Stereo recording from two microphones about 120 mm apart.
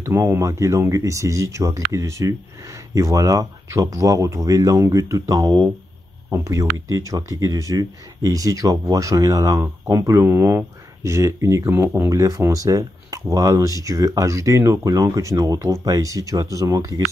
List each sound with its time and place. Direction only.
0.0 s speech: 25° right (ahead or behind)